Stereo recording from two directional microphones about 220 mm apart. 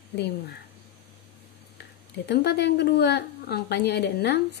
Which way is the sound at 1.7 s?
50° left (ahead or behind).